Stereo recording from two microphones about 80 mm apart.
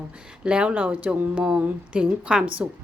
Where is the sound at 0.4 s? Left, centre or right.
Centre.